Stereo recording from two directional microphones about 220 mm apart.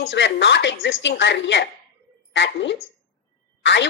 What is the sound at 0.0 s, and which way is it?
A woman's voice, 55° left (ahead or behind).